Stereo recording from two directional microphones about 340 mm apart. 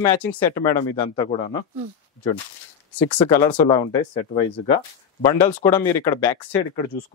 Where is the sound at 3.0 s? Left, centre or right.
Centre.